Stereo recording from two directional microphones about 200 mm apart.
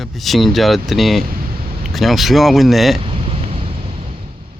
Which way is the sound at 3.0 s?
25° right (ahead or behind).